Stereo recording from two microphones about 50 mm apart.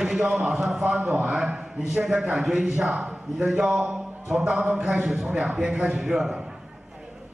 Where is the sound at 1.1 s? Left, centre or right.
Right.